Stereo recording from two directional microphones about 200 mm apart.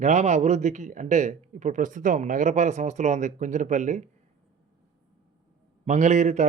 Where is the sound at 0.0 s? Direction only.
35° right (ahead or behind).